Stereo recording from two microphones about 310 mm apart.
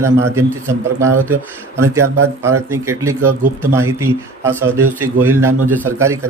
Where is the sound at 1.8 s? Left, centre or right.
Right.